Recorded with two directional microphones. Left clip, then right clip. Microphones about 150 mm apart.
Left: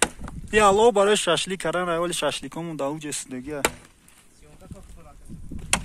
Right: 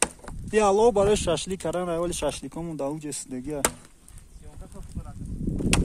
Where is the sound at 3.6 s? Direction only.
35° left (ahead or behind).